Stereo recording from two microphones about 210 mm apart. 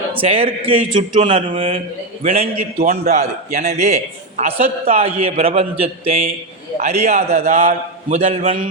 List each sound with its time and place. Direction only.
0.1 s a woman's voice: 25° right (ahead or behind)